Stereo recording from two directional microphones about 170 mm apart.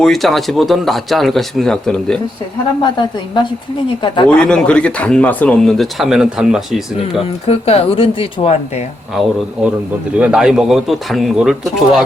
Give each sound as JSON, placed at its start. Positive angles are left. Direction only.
{"t": 0.0, "sound": "speech", "side_deg": 0}
{"t": 4.0, "sound": "speech", "side_deg": 30}
{"t": 4.3, "sound": "speech", "side_deg": 5}
{"t": 7.4, "sound": "speech", "side_deg": 35}
{"t": 9.1, "sound": "speech", "side_deg": -5}